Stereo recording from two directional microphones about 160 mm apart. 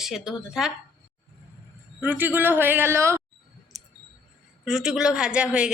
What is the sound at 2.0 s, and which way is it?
Speech, 10° right (ahead or behind).